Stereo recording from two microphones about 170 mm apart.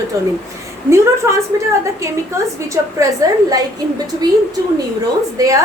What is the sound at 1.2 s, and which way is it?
A woman's voice, 15° right (ahead or behind).